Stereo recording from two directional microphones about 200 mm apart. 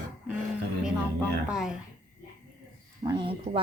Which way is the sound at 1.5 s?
5° right (ahead or behind).